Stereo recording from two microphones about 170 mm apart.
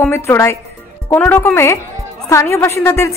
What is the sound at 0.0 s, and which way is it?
A woman's voice, 15° left (ahead or behind).